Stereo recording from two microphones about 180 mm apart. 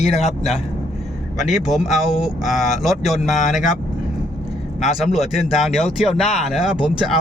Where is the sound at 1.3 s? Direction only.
Centre (ahead or behind).